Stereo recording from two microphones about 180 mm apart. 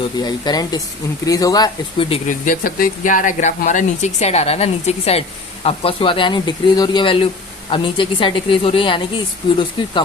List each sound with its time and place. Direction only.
0.2 s speech: 25° left (ahead or behind)
2.2 s speech: 50° left (ahead or behind); by 9.9 s 30° left (ahead or behind)